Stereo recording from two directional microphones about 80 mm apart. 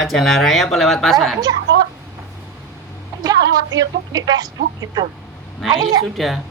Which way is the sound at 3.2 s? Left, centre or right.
Right.